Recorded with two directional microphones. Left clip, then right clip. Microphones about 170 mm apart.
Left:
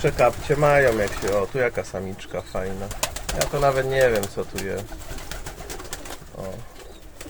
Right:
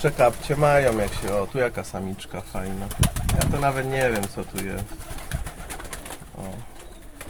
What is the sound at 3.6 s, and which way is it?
Speech, 5° right (ahead or behind).